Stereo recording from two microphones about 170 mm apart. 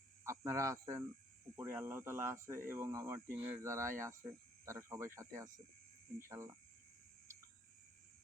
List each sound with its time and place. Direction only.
0.3 s speech: 15° right (ahead or behind)